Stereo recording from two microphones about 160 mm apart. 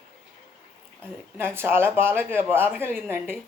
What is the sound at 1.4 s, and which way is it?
A woman's voice, 15° right (ahead or behind).